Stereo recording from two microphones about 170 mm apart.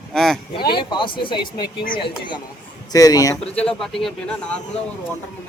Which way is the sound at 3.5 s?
5° left (ahead or behind).